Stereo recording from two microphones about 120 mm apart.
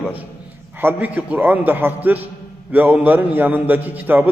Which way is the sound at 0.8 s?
15° right (ahead or behind).